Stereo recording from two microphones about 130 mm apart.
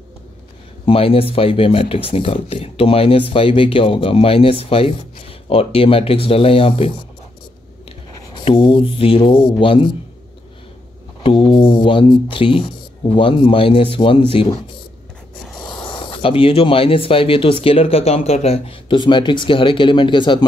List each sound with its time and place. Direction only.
0.8 s speech: 45° left (ahead or behind)
8.5 s speech: 40° left (ahead or behind)
11.2 s speech: 40° left (ahead or behind)
15.4 s a sound: centre (ahead or behind)
15.8 s speech: 40° left (ahead or behind)